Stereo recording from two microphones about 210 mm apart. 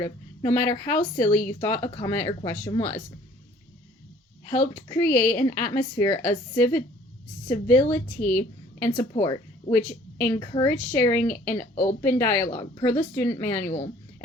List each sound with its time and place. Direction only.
0.0 s a woman's voice: 15° left (ahead or behind)
4.4 s a woman's voice: 15° left (ahead or behind)
9.0 s a woman's voice: 20° left (ahead or behind)
11.7 s a woman's voice: 30° left (ahead or behind)
12.0 s a woman's voice: 10° left (ahead or behind)
12.5 s a woman's voice: 25° left (ahead or behind)
12.8 s a woman's voice: 10° left (ahead or behind)